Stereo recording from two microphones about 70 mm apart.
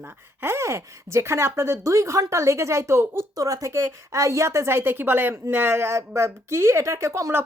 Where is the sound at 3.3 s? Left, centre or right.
Right.